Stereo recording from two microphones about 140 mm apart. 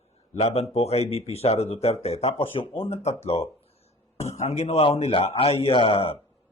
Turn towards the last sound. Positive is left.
turn(degrees=40)  # may be behind; listen again after turning